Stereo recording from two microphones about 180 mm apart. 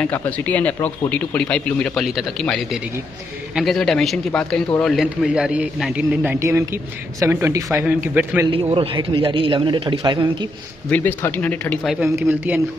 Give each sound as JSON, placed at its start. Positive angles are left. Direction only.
{"t": 0.0, "sound": "a man's voice", "side_deg": 10}
{"t": 8.5, "sound": "a man's voice", "side_deg": -30}
{"t": 10.9, "sound": "a man's voice", "side_deg": 10}